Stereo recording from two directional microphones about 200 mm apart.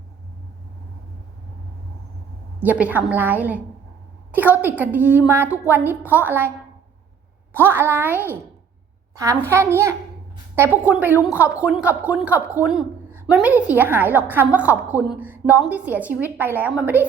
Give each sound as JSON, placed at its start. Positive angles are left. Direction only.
{"t": 2.6, "sound": "a woman's voice", "side_deg": -5}
{"t": 7.5, "sound": "a woman's voice", "side_deg": -10}